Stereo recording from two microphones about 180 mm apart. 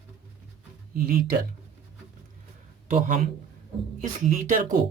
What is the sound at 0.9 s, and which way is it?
Speech, 55° right (ahead or behind).